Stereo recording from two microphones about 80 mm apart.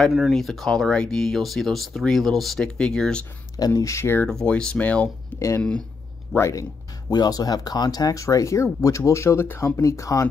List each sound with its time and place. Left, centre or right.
0.0 s speech: centre
3.5 s speech: left
3.8 s speech: left
4.3 s speech: centre
6.5 s speech: left